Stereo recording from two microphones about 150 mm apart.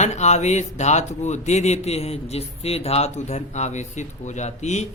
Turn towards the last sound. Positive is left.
turn(degrees=50)  # may be behind; listen again after turning